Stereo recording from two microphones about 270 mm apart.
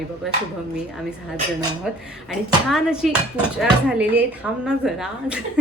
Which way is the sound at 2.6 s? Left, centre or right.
Centre.